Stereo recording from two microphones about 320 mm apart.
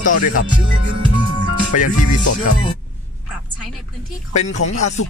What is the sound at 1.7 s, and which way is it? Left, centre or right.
Speech, left.